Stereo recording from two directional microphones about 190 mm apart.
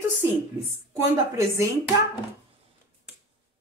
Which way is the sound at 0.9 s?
15° right (ahead or behind).